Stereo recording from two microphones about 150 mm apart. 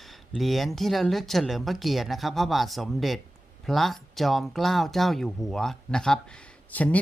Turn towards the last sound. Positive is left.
turn(degrees=10)  # may be behind; listen again after turning